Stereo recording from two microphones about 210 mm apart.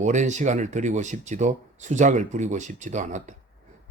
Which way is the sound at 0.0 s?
35° right (ahead or behind).